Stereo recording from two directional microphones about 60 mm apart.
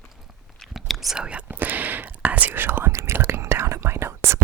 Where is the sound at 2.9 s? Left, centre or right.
Right.